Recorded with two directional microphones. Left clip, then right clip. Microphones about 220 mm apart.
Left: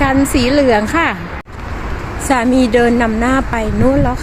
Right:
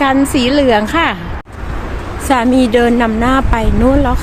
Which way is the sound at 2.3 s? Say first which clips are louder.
Right 1 dB; centre (ahead or behind).